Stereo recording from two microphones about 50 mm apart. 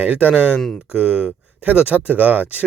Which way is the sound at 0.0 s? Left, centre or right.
Right.